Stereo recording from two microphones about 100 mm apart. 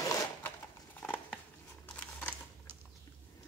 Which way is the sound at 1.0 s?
20° left (ahead or behind).